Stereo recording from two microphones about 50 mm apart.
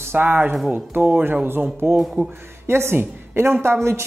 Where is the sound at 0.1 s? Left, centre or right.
Right.